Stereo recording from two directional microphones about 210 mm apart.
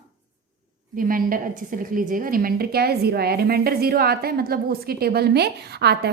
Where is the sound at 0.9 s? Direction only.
40° right (ahead or behind).